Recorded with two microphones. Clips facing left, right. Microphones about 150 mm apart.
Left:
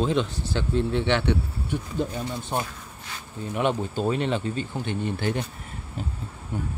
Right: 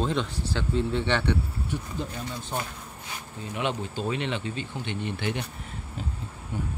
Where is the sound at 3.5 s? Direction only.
50° left (ahead or behind).